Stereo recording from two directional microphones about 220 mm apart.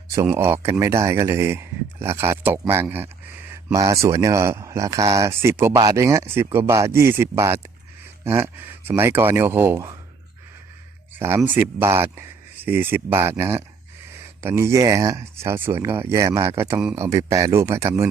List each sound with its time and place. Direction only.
0.1 s speech: 10° right (ahead or behind)
3.5 s a sound: 15° right (ahead or behind)
4.0 s speech: 15° right (ahead or behind)
11.2 s speech: 10° right (ahead or behind)